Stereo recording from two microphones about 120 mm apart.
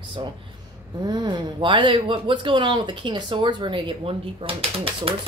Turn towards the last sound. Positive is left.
turn(degrees=-50)  # may be behind; listen again after turning